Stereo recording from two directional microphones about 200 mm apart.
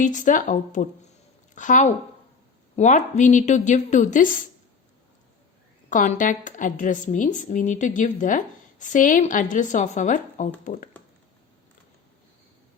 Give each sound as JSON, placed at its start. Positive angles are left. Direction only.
{"t": 0.0, "sound": "a woman's voice", "side_deg": 40}
{"t": 5.9, "sound": "a woman's voice", "side_deg": 40}